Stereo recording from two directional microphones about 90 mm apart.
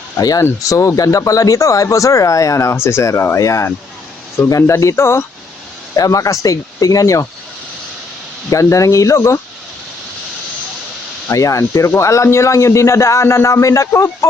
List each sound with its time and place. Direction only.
0.2 s speech: 40° left (ahead or behind)
6.0 s speech: 40° left (ahead or behind)
8.4 s speech: 35° left (ahead or behind)
11.3 s speech: 35° left (ahead or behind)